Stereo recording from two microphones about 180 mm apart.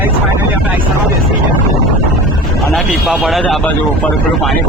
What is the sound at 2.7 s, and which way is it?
Speech, centre (ahead or behind).